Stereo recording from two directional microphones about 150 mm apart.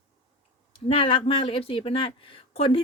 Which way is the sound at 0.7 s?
35° left (ahead or behind).